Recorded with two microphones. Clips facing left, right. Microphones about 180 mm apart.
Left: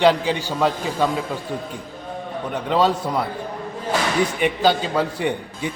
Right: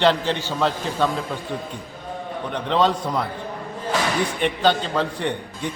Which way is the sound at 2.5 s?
5° left (ahead or behind).